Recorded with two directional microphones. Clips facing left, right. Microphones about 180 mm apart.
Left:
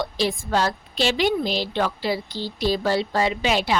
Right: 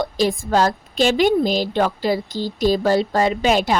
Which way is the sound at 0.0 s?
45° right (ahead or behind).